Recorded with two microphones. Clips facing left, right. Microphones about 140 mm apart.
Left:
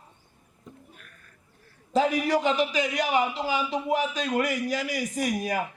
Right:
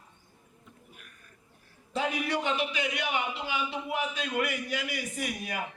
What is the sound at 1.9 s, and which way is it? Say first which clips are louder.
A man's voice: left 7 dB; 40° left (ahead or behind).